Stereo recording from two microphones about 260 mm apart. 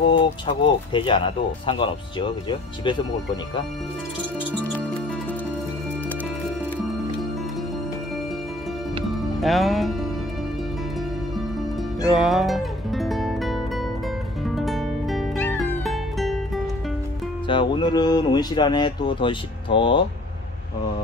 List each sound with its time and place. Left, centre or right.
0.2 s speech: centre
9.1 s music: centre
12.0 s music: centre
17.5 s speech: centre